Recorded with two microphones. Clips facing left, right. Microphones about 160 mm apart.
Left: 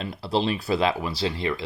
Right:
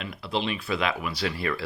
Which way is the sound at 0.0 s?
35° left (ahead or behind).